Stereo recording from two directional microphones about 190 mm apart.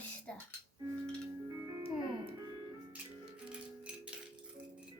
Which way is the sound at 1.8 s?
30° right (ahead or behind).